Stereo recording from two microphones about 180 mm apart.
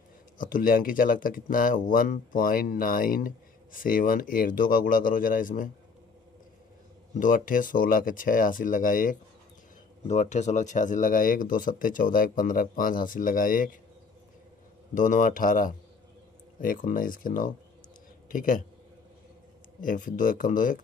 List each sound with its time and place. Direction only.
0.4 s speech: 50° left (ahead or behind)
7.2 s speech: 50° left (ahead or behind)
15.0 s speech: 45° left (ahead or behind)
19.8 s speech: 50° left (ahead or behind)